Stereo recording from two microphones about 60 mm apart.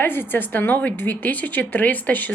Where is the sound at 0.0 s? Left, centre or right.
Left.